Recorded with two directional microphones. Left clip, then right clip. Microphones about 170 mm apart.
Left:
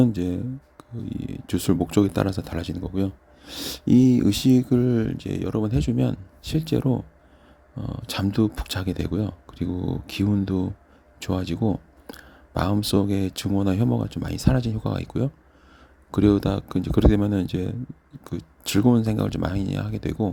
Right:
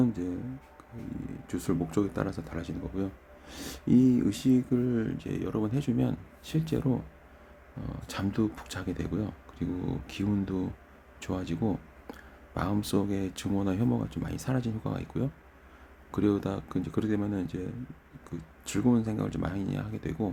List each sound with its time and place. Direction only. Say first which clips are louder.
0.0 s speech: left 7 dB; 45° left (ahead or behind)
12.1 s a sound: left 8 dB; 40° left (ahead or behind)
12.7 s speech: left 7 dB; 35° left (ahead or behind)